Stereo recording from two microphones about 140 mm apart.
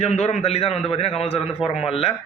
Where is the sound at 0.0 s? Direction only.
50° left (ahead or behind).